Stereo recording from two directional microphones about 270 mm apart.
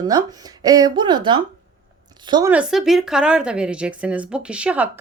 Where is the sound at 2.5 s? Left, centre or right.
Centre.